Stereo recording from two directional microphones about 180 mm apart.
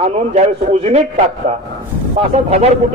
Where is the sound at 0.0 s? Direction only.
35° right (ahead or behind).